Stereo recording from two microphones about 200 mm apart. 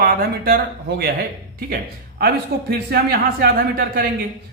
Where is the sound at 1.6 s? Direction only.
50° right (ahead or behind).